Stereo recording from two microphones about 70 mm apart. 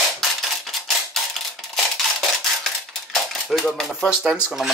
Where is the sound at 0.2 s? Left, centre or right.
Centre.